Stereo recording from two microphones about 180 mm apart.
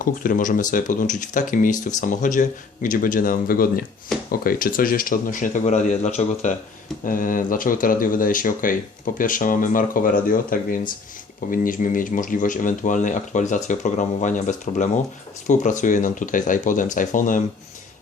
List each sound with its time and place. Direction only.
0.0 s speech: 50° left (ahead or behind)